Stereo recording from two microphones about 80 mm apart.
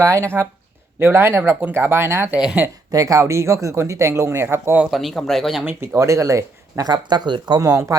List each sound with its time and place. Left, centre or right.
0.0 s speech: right
2.9 s speech: right
4.9 s speech: centre
5.6 s speech: right